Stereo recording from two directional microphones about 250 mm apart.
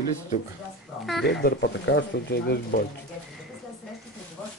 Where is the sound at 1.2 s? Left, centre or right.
Left.